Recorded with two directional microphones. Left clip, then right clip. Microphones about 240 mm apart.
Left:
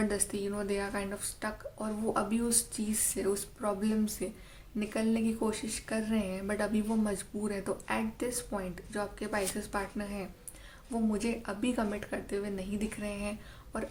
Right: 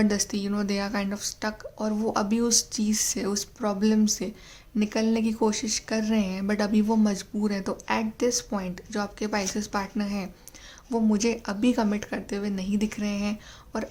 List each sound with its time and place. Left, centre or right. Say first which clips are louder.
0.0 s speech: right 6 dB; right